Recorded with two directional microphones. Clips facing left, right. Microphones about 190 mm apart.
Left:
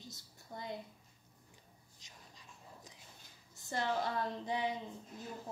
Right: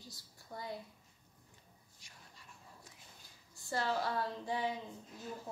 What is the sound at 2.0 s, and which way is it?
Whispering, 20° left (ahead or behind).